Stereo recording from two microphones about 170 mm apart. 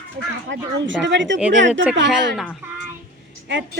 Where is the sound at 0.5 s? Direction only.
90° right.